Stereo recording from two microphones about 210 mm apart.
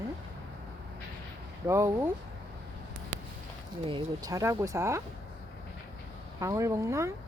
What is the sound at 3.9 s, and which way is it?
Speech, 20° right (ahead or behind).